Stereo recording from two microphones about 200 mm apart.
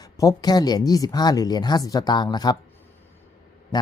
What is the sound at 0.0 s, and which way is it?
A woman's voice, 15° left (ahead or behind).